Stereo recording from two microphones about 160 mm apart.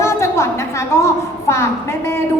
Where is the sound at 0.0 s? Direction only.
15° left (ahead or behind).